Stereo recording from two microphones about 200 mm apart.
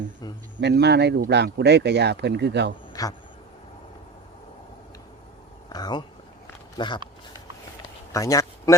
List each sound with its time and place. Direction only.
0.6 s speech: 55° right (ahead or behind)
2.9 s a sound: 20° left (ahead or behind)
5.6 s speech: 20° left (ahead or behind)
8.1 s speech: 15° left (ahead or behind)